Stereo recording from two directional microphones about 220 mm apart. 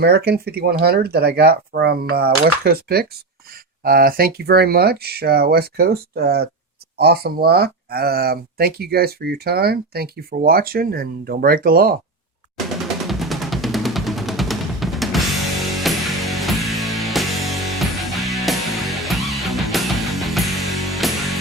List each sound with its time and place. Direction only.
0.0 s speech: 45° right (ahead or behind)
12.8 s music: centre (ahead or behind)